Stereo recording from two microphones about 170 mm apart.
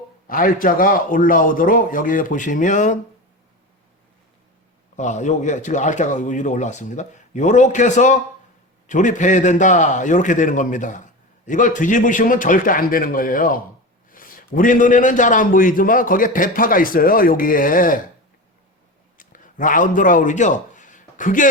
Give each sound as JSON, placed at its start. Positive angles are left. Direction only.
{"t": 0.3, "sound": "a man's voice", "side_deg": 55}
{"t": 4.9, "sound": "a man's voice", "side_deg": 45}
{"t": 19.1, "sound": "a sound", "side_deg": 50}